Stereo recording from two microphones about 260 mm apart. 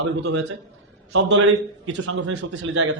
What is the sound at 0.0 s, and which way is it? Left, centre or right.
Speech, right.